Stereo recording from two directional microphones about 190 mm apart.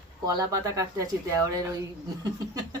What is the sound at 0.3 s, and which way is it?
Speech, 20° right (ahead or behind).